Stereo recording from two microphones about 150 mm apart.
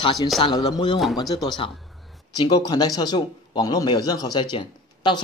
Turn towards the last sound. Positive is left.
turn(degrees=30)  # may be behind; listen again after turning